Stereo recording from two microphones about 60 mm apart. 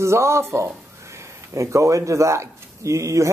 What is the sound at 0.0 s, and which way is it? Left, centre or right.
A man's voice, right.